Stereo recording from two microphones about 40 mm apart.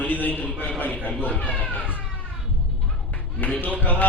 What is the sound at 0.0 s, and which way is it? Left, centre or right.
Speech, left.